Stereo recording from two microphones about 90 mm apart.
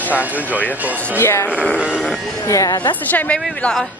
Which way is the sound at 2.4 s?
35° left (ahead or behind).